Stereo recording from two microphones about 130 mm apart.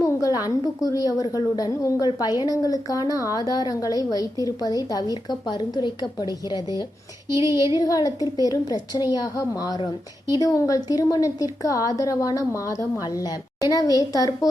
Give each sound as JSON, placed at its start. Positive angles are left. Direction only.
{"t": 0.0, "sound": "a woman's voice", "side_deg": 25}
{"t": 7.8, "sound": "a woman's voice", "side_deg": 30}